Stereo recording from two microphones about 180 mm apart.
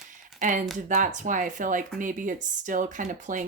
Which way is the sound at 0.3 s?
45° right (ahead or behind).